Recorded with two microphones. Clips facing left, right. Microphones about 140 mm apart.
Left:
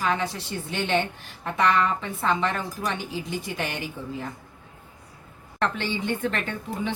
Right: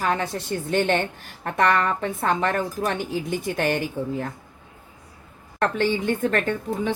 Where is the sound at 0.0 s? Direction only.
45° right (ahead or behind).